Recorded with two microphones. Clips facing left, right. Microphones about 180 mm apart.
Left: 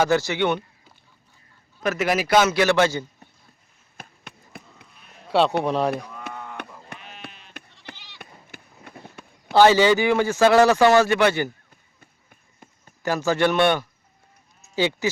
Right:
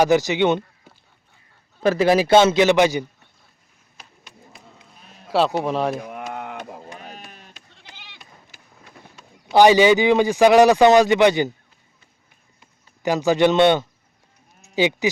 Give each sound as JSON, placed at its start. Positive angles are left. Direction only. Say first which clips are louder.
{"t": 0.0, "sound": "speech", "louder": "right 4 dB", "side_deg": -15}
{"t": 1.8, "sound": "a man's voice", "louder": "right 6 dB", "side_deg": -30}
{"t": 3.9, "sound": "a sound", "louder": "left 4 dB", "side_deg": 55}
{"t": 5.3, "sound": "speech", "louder": "even", "side_deg": 0}
{"t": 6.3, "sound": "a sound", "louder": "right 5 dB", "side_deg": -70}
{"t": 6.9, "sound": "chop", "louder": "right 3 dB", "side_deg": 65}
{"t": 7.3, "sound": "sheep", "louder": "right 2 dB", "side_deg": -45}
{"t": 8.2, "sound": "run", "louder": "left 5 dB", "side_deg": 55}
{"t": 9.5, "sound": "speech", "louder": "right 2 dB", "side_deg": -15}
{"t": 12.3, "sound": "a sound", "louder": "left 7 dB", "side_deg": 50}
{"t": 13.0, "sound": "a man's voice", "louder": "right 4 dB", "side_deg": -15}
{"t": 14.6, "sound": "sheep", "louder": "right 3 dB", "side_deg": -15}